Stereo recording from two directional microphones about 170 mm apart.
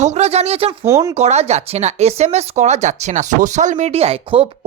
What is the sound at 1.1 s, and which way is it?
Speech, 40° right (ahead or behind).